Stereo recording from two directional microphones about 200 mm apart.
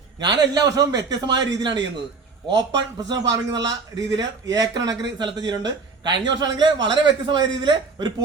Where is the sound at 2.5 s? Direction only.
65° right (ahead or behind).